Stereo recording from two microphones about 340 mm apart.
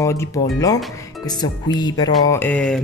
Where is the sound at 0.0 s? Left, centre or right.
Centre.